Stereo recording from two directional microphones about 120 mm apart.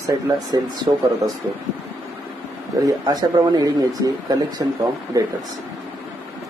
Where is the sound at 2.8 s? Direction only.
35° right (ahead or behind).